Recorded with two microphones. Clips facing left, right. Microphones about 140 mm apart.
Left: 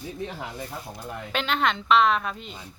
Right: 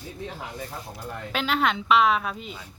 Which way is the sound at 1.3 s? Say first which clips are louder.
Right 1 dB; 5° right (ahead or behind).